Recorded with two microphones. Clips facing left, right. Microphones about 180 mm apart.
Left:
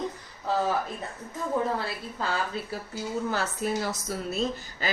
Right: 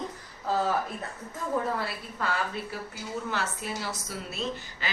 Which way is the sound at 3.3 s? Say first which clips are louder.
Left 5 dB; 45° left (ahead or behind).